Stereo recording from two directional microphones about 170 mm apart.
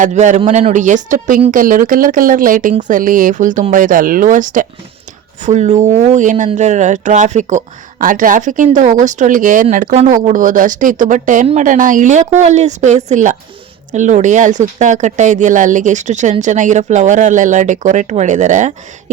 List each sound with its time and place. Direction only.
0.0 s speech: 45° right (ahead or behind)